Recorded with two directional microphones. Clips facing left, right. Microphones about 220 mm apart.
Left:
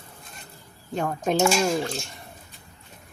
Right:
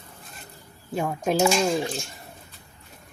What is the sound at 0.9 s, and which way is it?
Speech, 5° right (ahead or behind).